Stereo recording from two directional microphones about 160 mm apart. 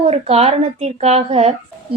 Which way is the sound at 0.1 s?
40° right (ahead or behind).